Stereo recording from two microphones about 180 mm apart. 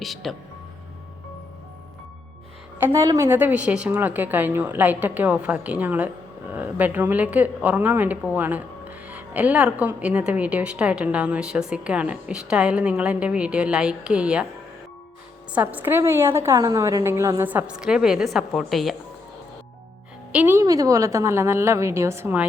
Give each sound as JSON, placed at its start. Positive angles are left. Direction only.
{"t": 0.0, "sound": "speech", "side_deg": 0}
{"t": 2.7, "sound": "a woman's voice", "side_deg": -15}
{"t": 15.5, "sound": "a woman's voice", "side_deg": -10}
{"t": 20.3, "sound": "a woman's voice", "side_deg": -10}